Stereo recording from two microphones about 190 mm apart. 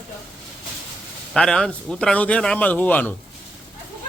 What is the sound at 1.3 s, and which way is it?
A man's voice, 5° left (ahead or behind).